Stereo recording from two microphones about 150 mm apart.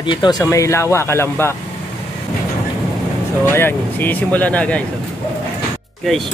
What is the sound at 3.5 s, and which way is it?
Speech, 15° left (ahead or behind).